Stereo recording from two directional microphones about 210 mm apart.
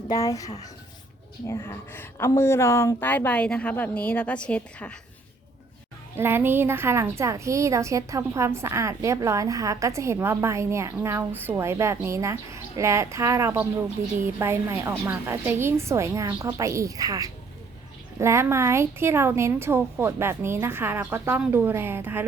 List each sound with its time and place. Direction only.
0.1 s a woman's voice: 15° left (ahead or behind)
6.1 s a woman's voice: 10° right (ahead or behind)